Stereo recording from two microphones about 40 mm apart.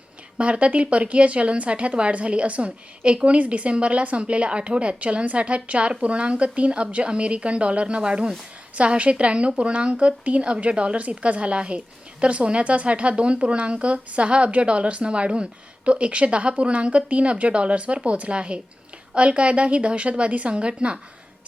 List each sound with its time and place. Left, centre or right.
0.3 s a woman's voice: right